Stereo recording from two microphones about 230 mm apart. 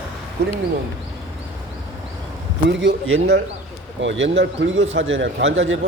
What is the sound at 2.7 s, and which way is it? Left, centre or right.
Speech, right.